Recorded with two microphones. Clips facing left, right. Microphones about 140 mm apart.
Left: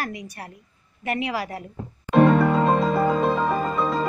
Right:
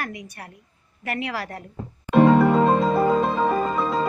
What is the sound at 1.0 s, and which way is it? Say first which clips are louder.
Speech: left 2 dB; 20° left (ahead or behind).